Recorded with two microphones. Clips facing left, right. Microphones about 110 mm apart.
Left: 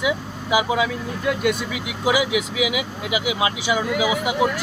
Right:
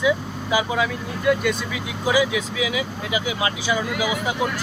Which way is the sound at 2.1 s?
15° left (ahead or behind).